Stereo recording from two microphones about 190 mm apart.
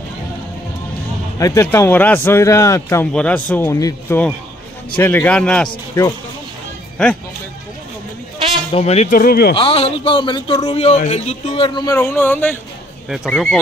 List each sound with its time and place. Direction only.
1.4 s speech: 15° left (ahead or behind)
5.7 s a man's voice: 20° left (ahead or behind)
7.0 s speech: 5° left (ahead or behind)
8.7 s speech: 35° left (ahead or behind); by 9.6 s 50° left (ahead or behind)
9.6 s a man's voice: 30° left (ahead or behind); by 12.5 s 10° left (ahead or behind)
13.1 s speech: centre (ahead or behind)